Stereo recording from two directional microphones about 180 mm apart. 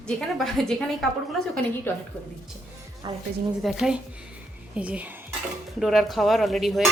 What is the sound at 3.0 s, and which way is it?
Speech, 25° right (ahead or behind).